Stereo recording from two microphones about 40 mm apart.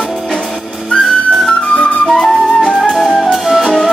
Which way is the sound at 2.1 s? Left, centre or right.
Centre.